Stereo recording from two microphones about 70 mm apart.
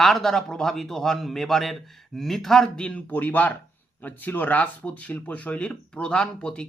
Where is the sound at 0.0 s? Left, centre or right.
Centre.